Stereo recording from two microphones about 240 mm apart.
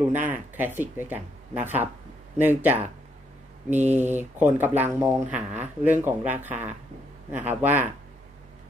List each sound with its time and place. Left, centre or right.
0.2 s speech: centre
3.7 s mantra: right
4.0 s speech: centre